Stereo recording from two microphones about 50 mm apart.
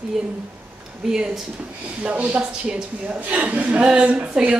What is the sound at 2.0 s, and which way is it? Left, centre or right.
A woman's voice, right.